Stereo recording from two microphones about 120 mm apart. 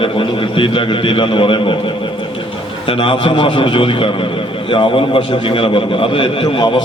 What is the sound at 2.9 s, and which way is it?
A man's voice, 45° left (ahead or behind).